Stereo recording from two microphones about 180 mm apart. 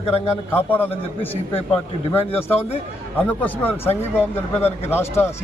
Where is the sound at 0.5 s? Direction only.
10° left (ahead or behind).